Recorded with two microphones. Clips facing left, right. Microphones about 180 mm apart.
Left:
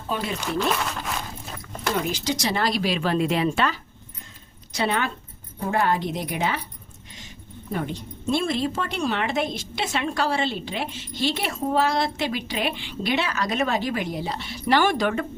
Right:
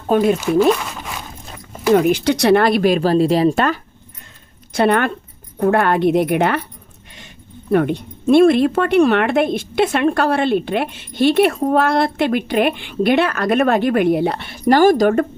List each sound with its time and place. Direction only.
0.1 s speech: 50° right (ahead or behind)
0.7 s speech: centre (ahead or behind)
1.5 s dog: 10° right (ahead or behind)
1.9 s speech: 60° right (ahead or behind)
3.0 s speech: 35° right (ahead or behind)
4.7 s speech: 55° right (ahead or behind)